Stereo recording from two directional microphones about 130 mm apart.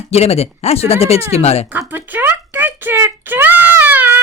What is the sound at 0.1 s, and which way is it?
Speech, 50° left (ahead or behind).